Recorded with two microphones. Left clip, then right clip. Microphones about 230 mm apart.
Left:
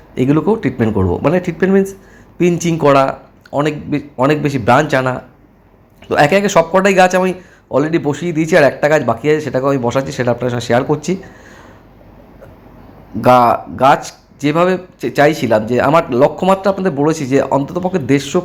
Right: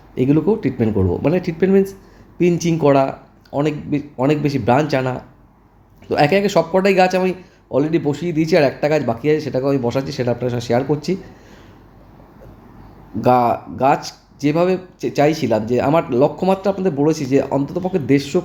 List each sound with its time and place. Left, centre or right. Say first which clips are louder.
0.1 s speech: left 3 dB; centre
13.2 s speech: left 5 dB; centre